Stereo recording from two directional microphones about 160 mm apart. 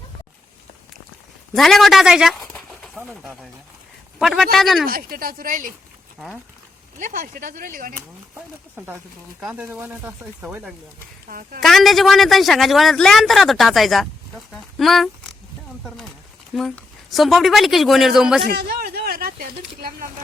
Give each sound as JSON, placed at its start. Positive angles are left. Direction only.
{"t": 1.5, "sound": "a man's voice", "side_deg": 0}
{"t": 4.9, "sound": "speech", "side_deg": -65}
{"t": 6.1, "sound": "a man's voice", "side_deg": 0}
{"t": 7.0, "sound": "speech", "side_deg": -55}
{"t": 9.4, "sound": "speech", "side_deg": -5}
{"t": 11.3, "sound": "speech", "side_deg": -60}
{"t": 11.6, "sound": "a man's voice", "side_deg": 0}
{"t": 16.6, "sound": "a man's voice", "side_deg": 0}
{"t": 18.4, "sound": "speech", "side_deg": -75}